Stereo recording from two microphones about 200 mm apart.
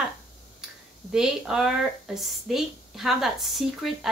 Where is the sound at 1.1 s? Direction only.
5° right (ahead or behind).